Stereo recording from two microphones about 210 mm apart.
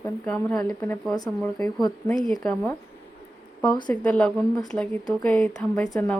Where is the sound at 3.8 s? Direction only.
5° left (ahead or behind).